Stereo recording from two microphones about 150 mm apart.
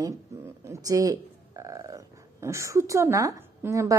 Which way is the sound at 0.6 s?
20° right (ahead or behind).